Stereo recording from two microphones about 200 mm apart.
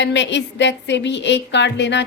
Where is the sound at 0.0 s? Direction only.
60° left (ahead or behind).